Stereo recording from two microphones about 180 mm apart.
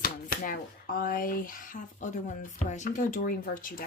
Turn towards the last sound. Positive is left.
turn(degrees=50)  # may be behind; listen again after turning